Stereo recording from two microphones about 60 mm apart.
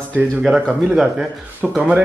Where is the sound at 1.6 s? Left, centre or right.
Centre.